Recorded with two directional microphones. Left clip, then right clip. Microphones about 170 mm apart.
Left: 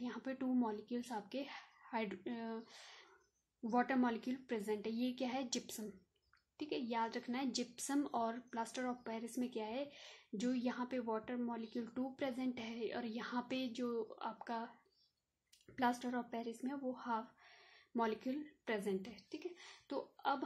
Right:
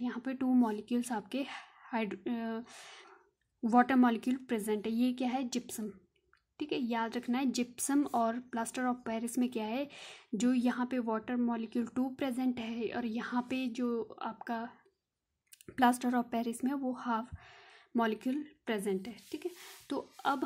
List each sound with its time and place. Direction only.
0.0 s a woman's voice: 30° right (ahead or behind)